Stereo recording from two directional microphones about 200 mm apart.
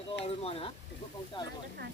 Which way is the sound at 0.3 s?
30° left (ahead or behind).